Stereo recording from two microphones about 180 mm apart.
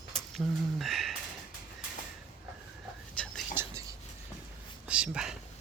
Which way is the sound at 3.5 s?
15° right (ahead or behind).